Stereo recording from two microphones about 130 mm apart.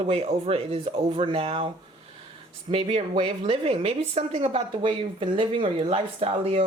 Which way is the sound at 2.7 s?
45° right (ahead or behind).